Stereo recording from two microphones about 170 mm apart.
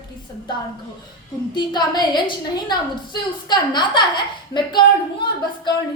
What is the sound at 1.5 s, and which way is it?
A woman's voice, 25° left (ahead or behind).